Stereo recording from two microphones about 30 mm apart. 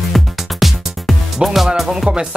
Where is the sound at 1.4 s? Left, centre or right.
Centre.